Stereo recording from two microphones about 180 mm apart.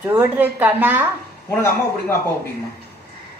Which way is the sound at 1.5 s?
10° left (ahead or behind).